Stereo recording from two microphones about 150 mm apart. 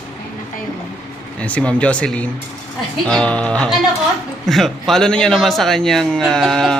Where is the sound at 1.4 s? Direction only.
10° left (ahead or behind).